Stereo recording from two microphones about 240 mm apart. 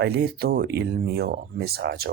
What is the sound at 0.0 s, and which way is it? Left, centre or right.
Speech, right.